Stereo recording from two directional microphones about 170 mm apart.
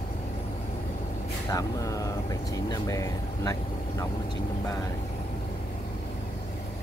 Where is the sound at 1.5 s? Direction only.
20° left (ahead or behind).